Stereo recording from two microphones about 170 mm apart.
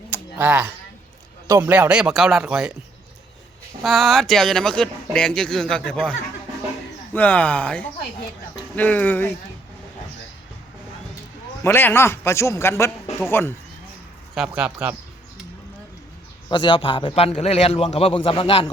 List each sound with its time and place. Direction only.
0.1 s a sound: 10° right (ahead or behind)
1.5 s speech: 15° right (ahead or behind)
3.8 s a man's voice: centre (ahead or behind)
11.6 s a man's voice: 10° left (ahead or behind)
14.3 s a man's voice: 5° right (ahead or behind)
16.5 s a man's voice: 30° left (ahead or behind)